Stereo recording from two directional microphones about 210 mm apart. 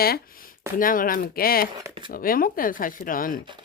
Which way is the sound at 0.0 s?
45° left (ahead or behind).